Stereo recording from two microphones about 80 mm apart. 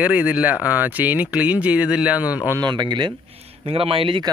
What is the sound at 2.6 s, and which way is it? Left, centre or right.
Speech, right.